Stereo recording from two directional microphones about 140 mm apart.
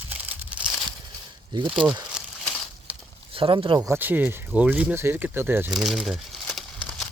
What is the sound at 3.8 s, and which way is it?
Speech, 15° right (ahead or behind).